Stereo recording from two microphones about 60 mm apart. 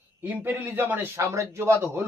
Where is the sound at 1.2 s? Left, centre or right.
Right.